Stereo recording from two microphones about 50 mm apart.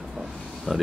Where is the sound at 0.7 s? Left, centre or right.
Centre.